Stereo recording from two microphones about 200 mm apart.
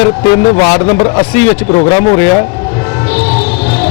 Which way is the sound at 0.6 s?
30° left (ahead or behind).